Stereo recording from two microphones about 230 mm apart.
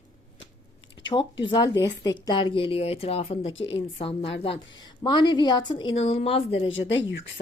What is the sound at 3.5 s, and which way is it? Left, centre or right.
Speech, left.